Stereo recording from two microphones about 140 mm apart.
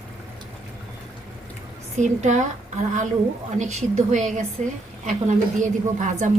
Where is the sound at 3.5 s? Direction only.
55° right (ahead or behind).